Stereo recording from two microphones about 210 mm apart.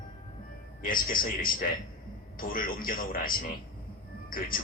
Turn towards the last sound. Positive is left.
turn(degrees=45)  # may be behind; listen again after turning